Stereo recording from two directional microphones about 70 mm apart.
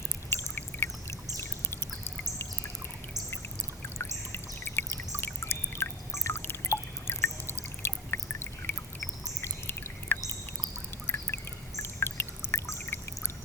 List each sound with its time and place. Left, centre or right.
0.3 s pour: left
3.9 s bird: left
5.4 s drip: left
9.4 s a sound: left
11.3 s pour: left